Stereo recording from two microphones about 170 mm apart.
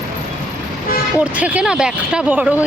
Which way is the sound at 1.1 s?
10° right (ahead or behind).